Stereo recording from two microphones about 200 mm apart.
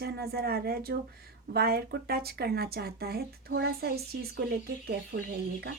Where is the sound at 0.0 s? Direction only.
50° right (ahead or behind).